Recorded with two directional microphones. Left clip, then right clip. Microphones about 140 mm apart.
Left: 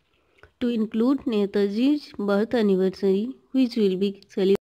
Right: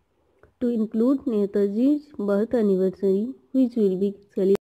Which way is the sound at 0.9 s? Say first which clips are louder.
Even; 20° left (ahead or behind).